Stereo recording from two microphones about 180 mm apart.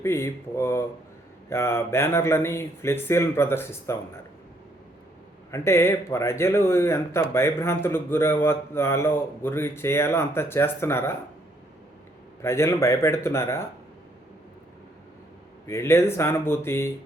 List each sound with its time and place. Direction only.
0.0 s speech: 15° left (ahead or behind)
5.5 s speech: 15° left (ahead or behind)
12.4 s speech: 15° left (ahead or behind)
15.6 s speech: 15° left (ahead or behind)